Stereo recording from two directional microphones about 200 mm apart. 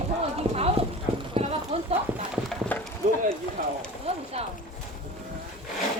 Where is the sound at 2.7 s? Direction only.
10° left (ahead or behind).